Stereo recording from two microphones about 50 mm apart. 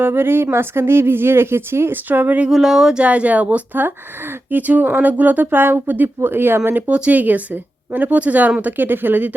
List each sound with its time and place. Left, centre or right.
0.0 s a woman's voice: right
2.0 s speech: right
2.5 s a sound: centre
3.0 s a woman's voice: right
6.9 s speech: right